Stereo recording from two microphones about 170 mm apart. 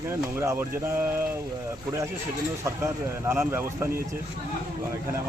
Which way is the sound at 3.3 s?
15° right (ahead or behind).